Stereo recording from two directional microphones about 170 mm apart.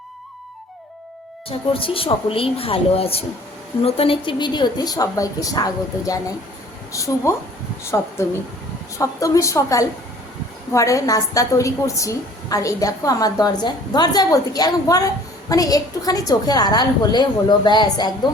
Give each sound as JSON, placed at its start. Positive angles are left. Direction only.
{"t": 1.5, "sound": "a woman's voice", "side_deg": 35}